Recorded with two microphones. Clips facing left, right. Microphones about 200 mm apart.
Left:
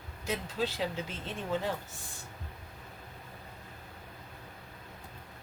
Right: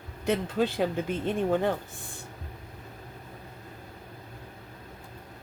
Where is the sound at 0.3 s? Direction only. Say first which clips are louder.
Right 7 dB; 55° right (ahead or behind).